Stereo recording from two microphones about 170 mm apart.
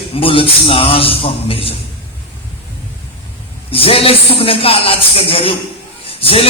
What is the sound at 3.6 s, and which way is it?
A man's voice, 35° left (ahead or behind).